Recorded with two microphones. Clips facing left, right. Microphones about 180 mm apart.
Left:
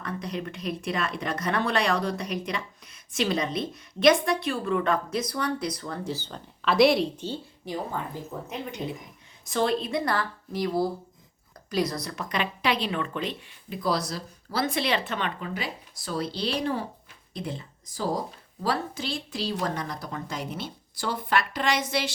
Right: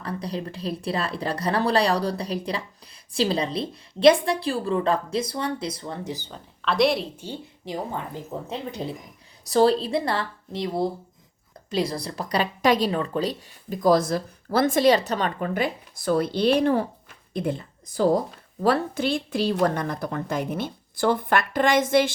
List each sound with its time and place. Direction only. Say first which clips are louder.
0.0 s speech: right 2 dB; 30° right (ahead or behind); by 6.3 s 15° right (ahead or behind)
6.3 s a woman's voice: left 1 dB; centre (ahead or behind)
7.6 s speech: right 2 dB; 25° right (ahead or behind); by 22.1 s 50° right (ahead or behind)